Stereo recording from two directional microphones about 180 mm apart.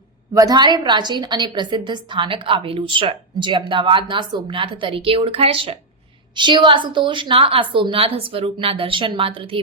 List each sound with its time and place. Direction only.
0.3 s a woman's voice: 20° right (ahead or behind)